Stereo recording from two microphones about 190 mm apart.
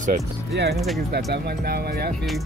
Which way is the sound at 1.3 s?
60° right (ahead or behind).